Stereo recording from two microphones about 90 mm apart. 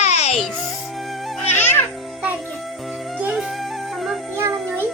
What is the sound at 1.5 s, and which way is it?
Babbling, 20° left (ahead or behind).